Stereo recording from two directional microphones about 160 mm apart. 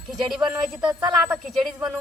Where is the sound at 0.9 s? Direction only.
20° right (ahead or behind).